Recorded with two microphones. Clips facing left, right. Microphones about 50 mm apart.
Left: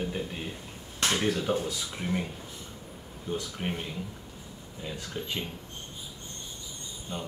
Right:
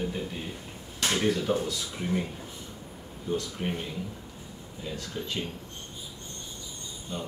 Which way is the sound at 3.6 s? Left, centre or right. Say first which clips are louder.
Right 1 dB; centre.